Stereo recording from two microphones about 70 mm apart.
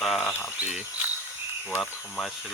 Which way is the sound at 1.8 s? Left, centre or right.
Centre.